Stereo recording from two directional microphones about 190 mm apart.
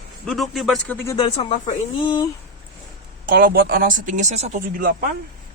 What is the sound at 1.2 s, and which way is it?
Speech, 30° left (ahead or behind).